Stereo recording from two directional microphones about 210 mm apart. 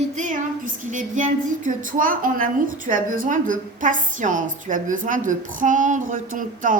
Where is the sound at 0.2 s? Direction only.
35° right (ahead or behind).